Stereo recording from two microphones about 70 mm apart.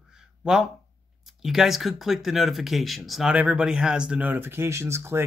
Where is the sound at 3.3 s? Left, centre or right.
Centre.